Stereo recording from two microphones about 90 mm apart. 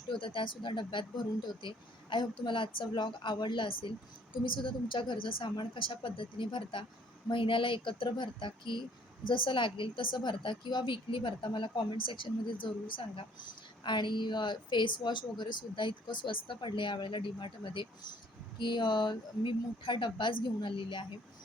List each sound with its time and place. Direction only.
0.1 s a woman's voice: 70° left (ahead or behind)
13.8 s speech: 60° left (ahead or behind)